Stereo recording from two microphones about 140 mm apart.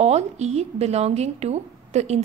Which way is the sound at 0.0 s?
50° right (ahead or behind).